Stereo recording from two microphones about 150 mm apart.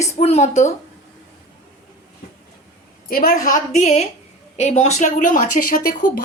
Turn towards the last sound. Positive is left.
turn(degrees=70)  # may be behind; listen again after turning